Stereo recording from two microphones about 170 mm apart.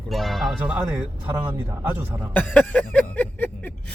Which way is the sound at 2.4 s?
10° left (ahead or behind).